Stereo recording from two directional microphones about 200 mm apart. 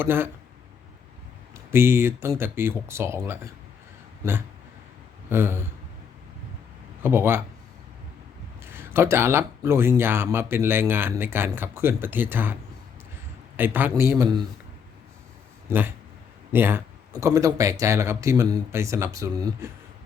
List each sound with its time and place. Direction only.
0.0 s speech: 10° right (ahead or behind)
1.7 s speech: 10° right (ahead or behind)
5.3 s speech: 10° right (ahead or behind)
7.0 s speech: 10° right (ahead or behind)
8.6 s speech: 10° right (ahead or behind)
13.6 s speech: 10° right (ahead or behind)
16.5 s speech: 10° right (ahead or behind)